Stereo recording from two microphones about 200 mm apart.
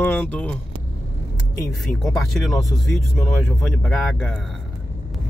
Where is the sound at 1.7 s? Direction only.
Centre (ahead or behind).